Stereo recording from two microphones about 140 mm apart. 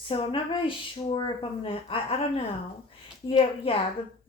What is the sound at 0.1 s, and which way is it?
Speech, 40° left (ahead or behind).